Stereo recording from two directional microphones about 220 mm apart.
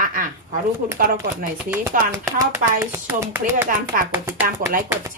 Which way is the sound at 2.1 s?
15° right (ahead or behind).